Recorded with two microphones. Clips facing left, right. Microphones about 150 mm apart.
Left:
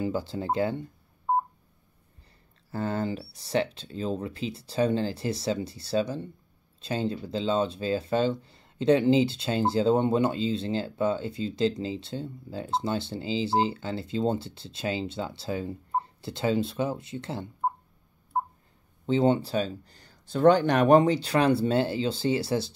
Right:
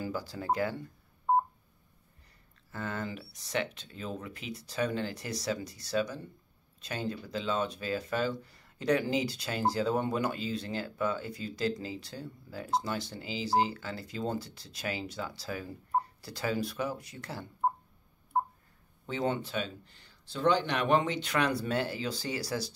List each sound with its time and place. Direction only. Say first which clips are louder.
0.0 s speech: left 6 dB; 25° left (ahead or behind)
2.7 s speech: left 8 dB; 30° left (ahead or behind)
18.3 s a sound: left 1 dB; 5° left (ahead or behind)
19.0 s speech: left 9 dB; 30° left (ahead or behind)